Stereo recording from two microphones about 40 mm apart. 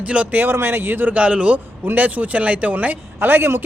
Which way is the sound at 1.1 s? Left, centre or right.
Right.